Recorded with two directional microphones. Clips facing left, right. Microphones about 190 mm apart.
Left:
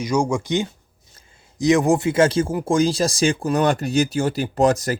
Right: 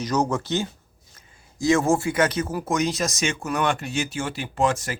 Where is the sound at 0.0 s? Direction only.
10° left (ahead or behind).